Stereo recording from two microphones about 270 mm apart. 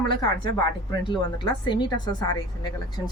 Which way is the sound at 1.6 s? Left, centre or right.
Centre.